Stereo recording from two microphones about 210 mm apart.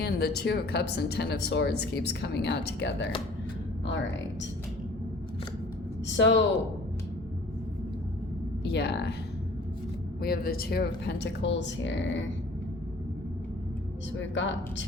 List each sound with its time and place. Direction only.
0.0 s speech: 50° left (ahead or behind)
6.1 s speech: 55° left (ahead or behind)
8.6 s speech: 50° left (ahead or behind)
10.2 s speech: 45° left (ahead or behind)
14.2 s speech: 60° left (ahead or behind)